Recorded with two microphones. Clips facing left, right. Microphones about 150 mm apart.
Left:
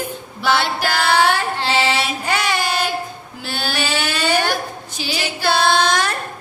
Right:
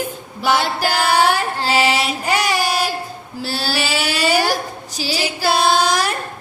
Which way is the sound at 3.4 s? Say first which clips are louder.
Right 2 dB; 35° right (ahead or behind).